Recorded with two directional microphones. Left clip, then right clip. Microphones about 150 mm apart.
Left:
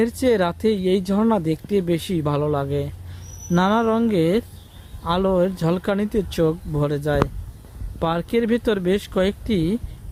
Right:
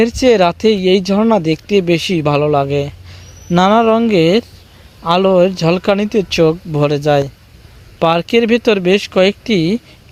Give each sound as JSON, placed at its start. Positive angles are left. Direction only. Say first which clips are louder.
{"t": 0.0, "sound": "speech", "louder": "right 9 dB", "side_deg": -15}